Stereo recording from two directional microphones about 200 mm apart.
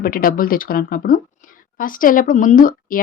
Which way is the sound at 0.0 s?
45° left (ahead or behind).